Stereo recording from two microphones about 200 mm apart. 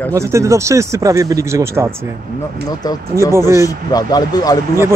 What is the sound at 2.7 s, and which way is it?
Speech, 20° left (ahead or behind).